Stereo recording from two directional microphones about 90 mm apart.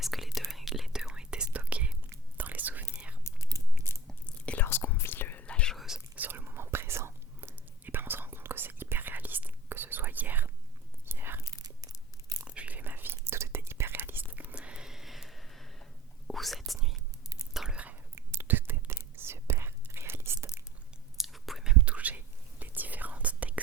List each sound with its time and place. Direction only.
0.0 s whispering: centre (ahead or behind); by 2.8 s 20° right (ahead or behind)
3.3 s whispering: 35° left (ahead or behind)
4.0 s whispering: 15° left (ahead or behind)
5.7 s whispering: 5° right (ahead or behind)
6.1 s whispering: 20° right (ahead or behind)
11.4 s tearing: 45° right (ahead or behind)
12.5 s whispering: 15° right (ahead or behind)
18.1 s whispering: 25° right (ahead or behind)
21.2 s whispering: centre (ahead or behind)